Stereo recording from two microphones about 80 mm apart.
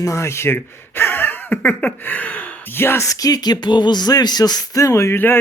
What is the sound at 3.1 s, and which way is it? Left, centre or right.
Speech, left.